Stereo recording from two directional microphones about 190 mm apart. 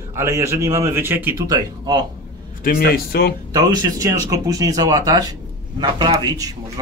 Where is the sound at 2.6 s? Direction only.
50° left (ahead or behind).